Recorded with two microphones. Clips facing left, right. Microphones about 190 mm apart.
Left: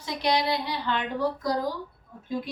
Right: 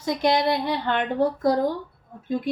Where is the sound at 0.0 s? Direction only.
50° right (ahead or behind).